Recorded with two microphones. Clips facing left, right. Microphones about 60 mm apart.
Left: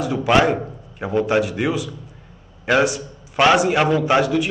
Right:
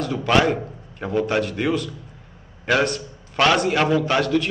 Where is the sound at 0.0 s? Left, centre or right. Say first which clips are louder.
Left 2 dB; centre.